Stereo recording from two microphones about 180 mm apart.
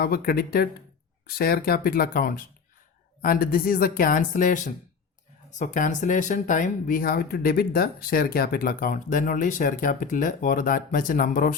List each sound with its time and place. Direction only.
0.0 s speech: 55° left (ahead or behind)